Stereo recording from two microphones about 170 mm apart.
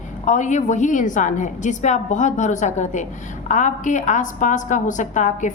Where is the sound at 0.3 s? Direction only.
45° left (ahead or behind).